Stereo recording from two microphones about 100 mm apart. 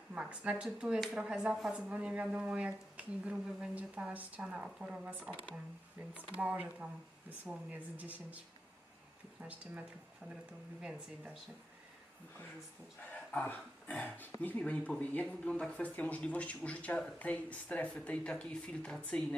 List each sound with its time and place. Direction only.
0.1 s speech: 10° right (ahead or behind)
9.4 s speech: 15° right (ahead or behind)
13.0 s speech: 15° left (ahead or behind)